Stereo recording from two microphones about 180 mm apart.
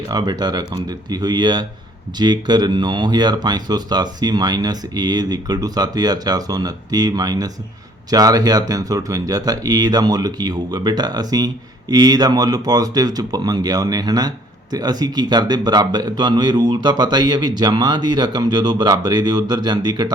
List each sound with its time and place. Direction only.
0.1 s speech: 20° right (ahead or behind)